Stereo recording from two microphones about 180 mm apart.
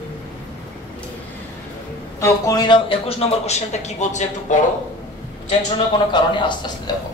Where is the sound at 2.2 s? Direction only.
20° left (ahead or behind); by 4.5 s 40° left (ahead or behind).